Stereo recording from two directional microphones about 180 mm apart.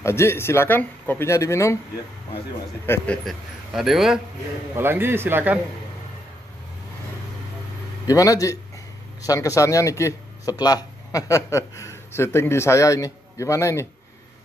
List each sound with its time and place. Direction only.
0.0 s speech: 15° left (ahead or behind)
2.9 s a man's voice: 5° left (ahead or behind)
4.7 s a man's voice: 10° right (ahead or behind)
8.1 s a man's voice: 20° left (ahead or behind)